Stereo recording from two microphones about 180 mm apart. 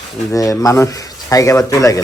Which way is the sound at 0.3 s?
20° left (ahead or behind).